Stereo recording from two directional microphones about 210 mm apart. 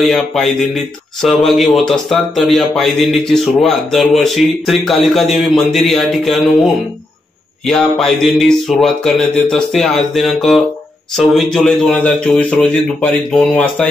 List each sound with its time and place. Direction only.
0.0 s speech: centre (ahead or behind)